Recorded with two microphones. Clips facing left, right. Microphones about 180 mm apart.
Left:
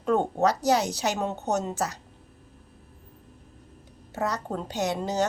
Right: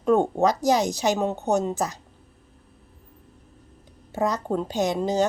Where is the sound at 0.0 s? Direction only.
15° right (ahead or behind).